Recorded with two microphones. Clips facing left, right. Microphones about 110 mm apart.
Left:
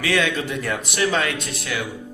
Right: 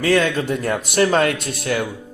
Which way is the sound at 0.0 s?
40° right (ahead or behind).